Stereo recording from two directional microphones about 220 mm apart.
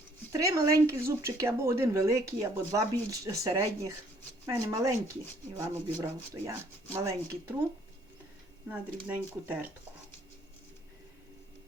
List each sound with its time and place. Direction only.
0.3 s speech: 15° right (ahead or behind)
8.7 s speech: 10° right (ahead or behind)